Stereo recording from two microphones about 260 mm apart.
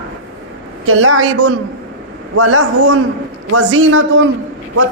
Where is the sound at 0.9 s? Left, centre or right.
Right.